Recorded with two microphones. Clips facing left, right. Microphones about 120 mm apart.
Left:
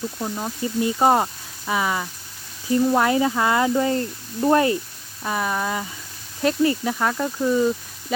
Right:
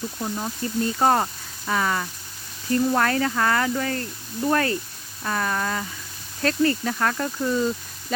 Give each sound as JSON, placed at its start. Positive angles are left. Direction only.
{"t": 0.2, "sound": "speech", "side_deg": 10}